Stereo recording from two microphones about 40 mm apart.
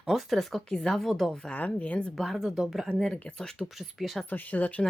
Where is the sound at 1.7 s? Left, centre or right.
Left.